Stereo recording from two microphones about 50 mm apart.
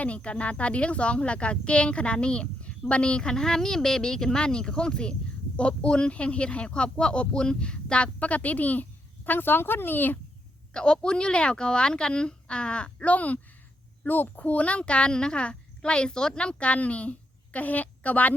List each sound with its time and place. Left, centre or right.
0.0 s a woman's voice: left
10.8 s speech: centre